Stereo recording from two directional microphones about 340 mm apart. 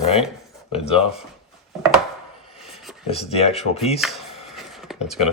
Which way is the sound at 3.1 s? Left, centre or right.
Centre.